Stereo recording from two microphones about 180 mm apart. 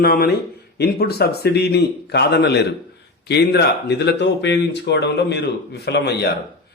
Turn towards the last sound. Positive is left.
turn(degrees=70)  # may be behind; listen again after turning